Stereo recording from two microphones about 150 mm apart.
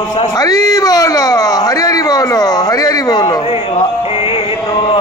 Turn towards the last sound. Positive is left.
turn(degrees=40)  # may be behind; listen again after turning